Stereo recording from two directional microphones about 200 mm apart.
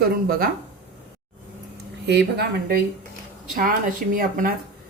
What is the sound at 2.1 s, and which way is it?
Speech, 55° right (ahead or behind).